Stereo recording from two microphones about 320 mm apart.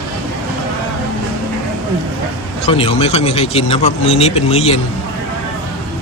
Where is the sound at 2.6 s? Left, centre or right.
Centre.